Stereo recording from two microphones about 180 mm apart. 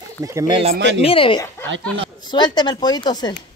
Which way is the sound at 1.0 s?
30° left (ahead or behind).